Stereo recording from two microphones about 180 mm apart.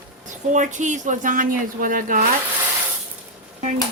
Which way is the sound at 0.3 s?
45° right (ahead or behind).